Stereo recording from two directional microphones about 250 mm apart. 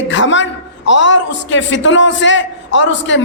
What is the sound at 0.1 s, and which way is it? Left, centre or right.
A man's voice, left.